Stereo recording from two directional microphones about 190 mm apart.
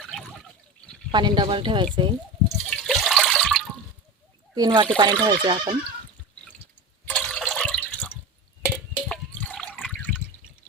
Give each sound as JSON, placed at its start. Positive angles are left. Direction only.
{"t": 0.0, "sound": "water", "side_deg": 0}
{"t": 1.1, "sound": "speech", "side_deg": -25}
{"t": 2.6, "sound": "toilet flush", "side_deg": 0}
{"t": 4.5, "sound": "speech", "side_deg": -20}
{"t": 7.0, "sound": "water", "side_deg": 5}
{"t": 8.6, "sound": "drip", "side_deg": 5}